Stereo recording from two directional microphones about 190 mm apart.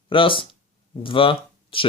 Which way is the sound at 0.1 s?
25° left (ahead or behind).